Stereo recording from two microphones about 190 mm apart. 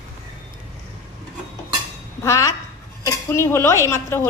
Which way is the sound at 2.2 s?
15° left (ahead or behind).